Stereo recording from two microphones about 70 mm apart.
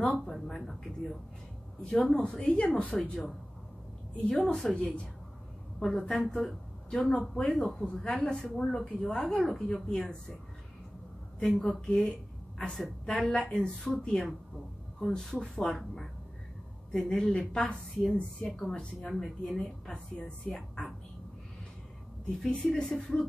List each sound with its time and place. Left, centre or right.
0.3 s speech: centre
1.9 s a woman's voice: centre
4.7 s a woman's voice: centre
11.4 s speech: centre
12.1 s a sound: centre
12.7 s a woman's voice: centre
19.9 s a woman's voice: centre
20.4 s speech: centre
22.4 s a woman's voice: centre